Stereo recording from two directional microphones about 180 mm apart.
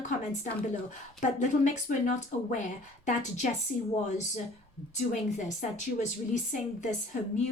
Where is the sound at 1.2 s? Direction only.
40° left (ahead or behind).